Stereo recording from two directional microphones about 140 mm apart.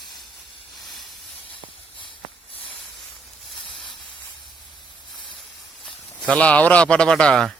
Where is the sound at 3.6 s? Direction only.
35° left (ahead or behind).